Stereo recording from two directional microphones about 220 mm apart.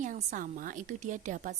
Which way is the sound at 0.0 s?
35° right (ahead or behind).